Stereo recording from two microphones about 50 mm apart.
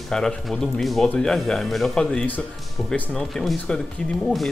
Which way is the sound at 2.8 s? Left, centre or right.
Centre.